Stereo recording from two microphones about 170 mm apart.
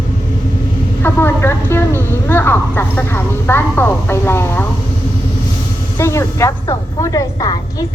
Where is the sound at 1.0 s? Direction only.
15° left (ahead or behind).